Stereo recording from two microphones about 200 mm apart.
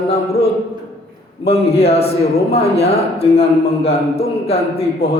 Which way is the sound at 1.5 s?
30° left (ahead or behind).